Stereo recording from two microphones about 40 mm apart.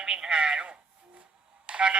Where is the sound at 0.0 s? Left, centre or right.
Centre.